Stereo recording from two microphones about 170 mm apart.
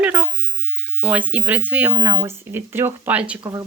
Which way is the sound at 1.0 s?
10° right (ahead or behind).